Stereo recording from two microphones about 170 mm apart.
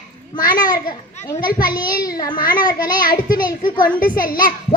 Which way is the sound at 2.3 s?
55° left (ahead or behind).